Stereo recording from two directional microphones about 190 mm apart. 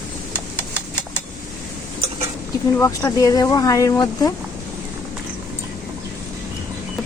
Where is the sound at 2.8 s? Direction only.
15° left (ahead or behind).